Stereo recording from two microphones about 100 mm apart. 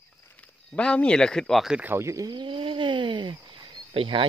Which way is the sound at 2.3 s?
55° right (ahead or behind).